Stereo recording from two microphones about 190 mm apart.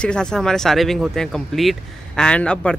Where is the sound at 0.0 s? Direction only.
5° left (ahead or behind).